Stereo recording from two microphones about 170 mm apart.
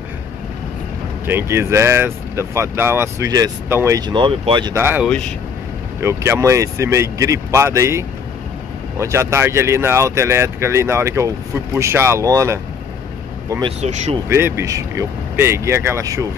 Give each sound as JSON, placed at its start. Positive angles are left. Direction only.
{"t": 1.2, "sound": "speech", "side_deg": -15}
{"t": 4.7, "sound": "speech", "side_deg": -15}
{"t": 13.7, "sound": "speech", "side_deg": -40}
{"t": 14.3, "sound": "speech", "side_deg": -15}